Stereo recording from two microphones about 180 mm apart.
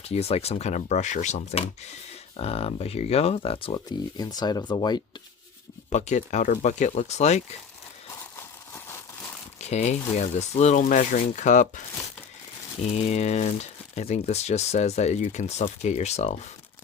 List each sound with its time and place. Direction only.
0.0 s speech: 35° left (ahead or behind)
5.9 s speech: 40° left (ahead or behind)
9.6 s speech: 40° left (ahead or behind)
12.9 s speech: 40° left (ahead or behind)